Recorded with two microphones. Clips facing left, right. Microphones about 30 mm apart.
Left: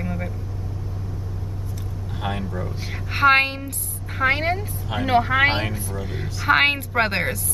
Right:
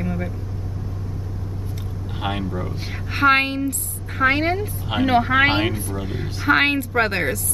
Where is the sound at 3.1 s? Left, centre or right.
Centre.